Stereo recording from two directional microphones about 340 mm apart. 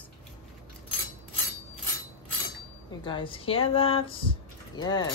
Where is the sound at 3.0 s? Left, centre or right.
Centre.